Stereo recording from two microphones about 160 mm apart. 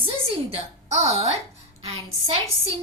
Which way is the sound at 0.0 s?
35° right (ahead or behind).